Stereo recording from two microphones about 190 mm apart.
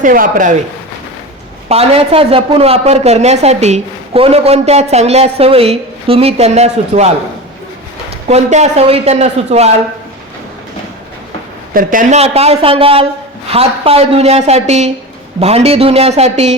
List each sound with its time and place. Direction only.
0.0 s speech: 45° right (ahead or behind)
1.7 s speech: 30° right (ahead or behind)
8.3 s speech: 35° right (ahead or behind)
11.7 s speech: 45° right (ahead or behind)